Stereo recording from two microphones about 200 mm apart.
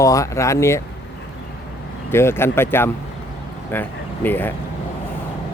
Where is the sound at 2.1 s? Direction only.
10° left (ahead or behind).